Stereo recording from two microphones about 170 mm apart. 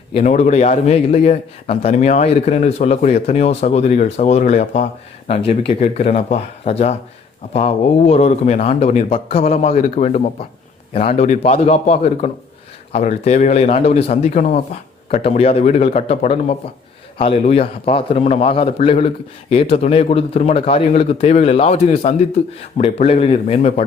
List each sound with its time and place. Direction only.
0.1 s a man's voice: 40° left (ahead or behind)
5.3 s a man's voice: 35° left (ahead or behind)